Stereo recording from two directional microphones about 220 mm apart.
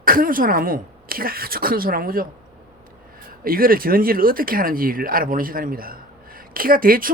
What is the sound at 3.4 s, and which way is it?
Speech, 40° right (ahead or behind).